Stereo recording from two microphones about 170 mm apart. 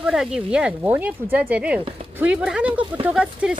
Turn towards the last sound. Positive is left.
turn(degrees=-5)  # may be behind; listen again after turning